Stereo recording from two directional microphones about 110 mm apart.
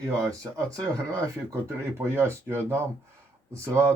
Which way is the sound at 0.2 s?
30° right (ahead or behind).